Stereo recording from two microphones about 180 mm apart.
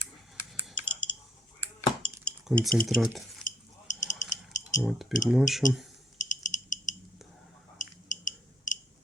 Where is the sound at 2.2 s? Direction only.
Centre (ahead or behind).